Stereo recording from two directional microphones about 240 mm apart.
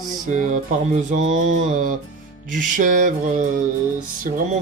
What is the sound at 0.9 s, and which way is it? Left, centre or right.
Speech, right.